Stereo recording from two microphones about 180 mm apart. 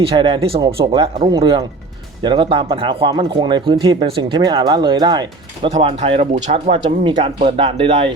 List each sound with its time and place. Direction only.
0.1 s speech: 30° right (ahead or behind)